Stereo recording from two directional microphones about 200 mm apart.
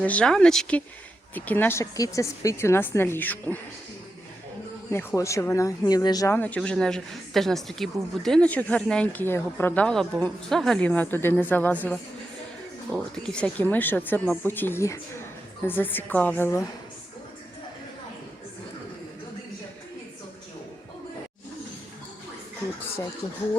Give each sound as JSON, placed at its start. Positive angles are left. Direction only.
{"t": 0.0, "sound": "speech", "side_deg": 5}
{"t": 4.9, "sound": "speech", "side_deg": 15}
{"t": 12.9, "sound": "speech", "side_deg": -15}
{"t": 13.2, "sound": "speech", "side_deg": 5}